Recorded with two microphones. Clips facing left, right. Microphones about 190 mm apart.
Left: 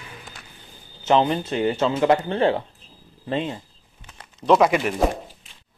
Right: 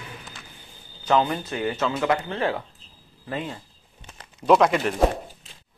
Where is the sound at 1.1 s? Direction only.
25° left (ahead or behind).